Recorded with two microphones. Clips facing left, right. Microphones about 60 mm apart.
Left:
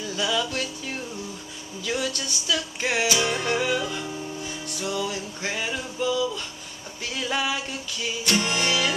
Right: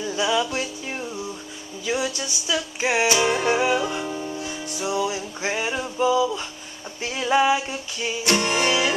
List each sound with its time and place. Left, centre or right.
0.0 s music: centre